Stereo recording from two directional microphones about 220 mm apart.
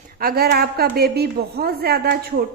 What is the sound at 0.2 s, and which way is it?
A woman's voice, 45° right (ahead or behind).